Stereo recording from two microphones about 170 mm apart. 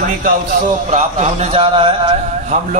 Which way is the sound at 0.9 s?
40° right (ahead or behind).